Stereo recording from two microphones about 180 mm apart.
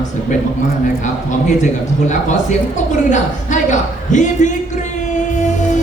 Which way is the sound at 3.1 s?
45° left (ahead or behind).